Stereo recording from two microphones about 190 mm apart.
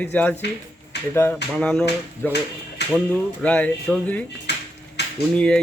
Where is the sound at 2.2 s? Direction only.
10° left (ahead or behind).